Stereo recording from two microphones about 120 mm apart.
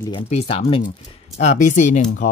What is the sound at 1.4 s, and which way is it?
Speech, 80° left.